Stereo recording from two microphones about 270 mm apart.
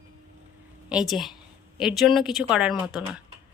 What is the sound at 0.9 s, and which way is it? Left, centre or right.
A woman's voice, centre.